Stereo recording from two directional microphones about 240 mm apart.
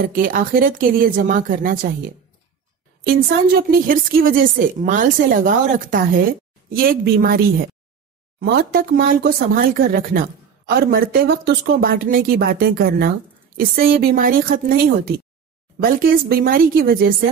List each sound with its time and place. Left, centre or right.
0.0 s a woman's voice: right